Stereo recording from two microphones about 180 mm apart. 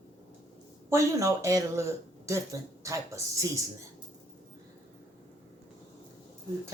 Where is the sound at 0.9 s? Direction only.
15° right (ahead or behind).